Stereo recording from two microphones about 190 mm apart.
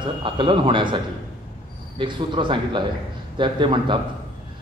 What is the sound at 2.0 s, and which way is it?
A man's voice, 25° right (ahead or behind).